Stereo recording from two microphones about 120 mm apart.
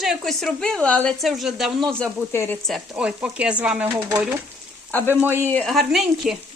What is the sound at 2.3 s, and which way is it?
Speech, 20° left (ahead or behind).